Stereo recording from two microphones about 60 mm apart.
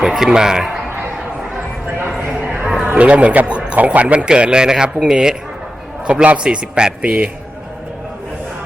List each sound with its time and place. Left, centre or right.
0.0 s speech: centre
2.3 s a sound: right
2.6 s speech: centre
6.1 s a man's voice: right